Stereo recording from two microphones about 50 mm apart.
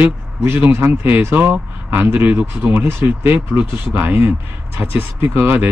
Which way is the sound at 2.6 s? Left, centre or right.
Right.